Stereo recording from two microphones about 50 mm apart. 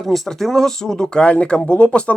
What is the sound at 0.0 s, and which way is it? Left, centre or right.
Speech, centre.